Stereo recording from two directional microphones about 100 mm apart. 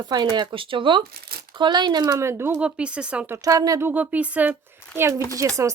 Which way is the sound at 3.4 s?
35° right (ahead or behind).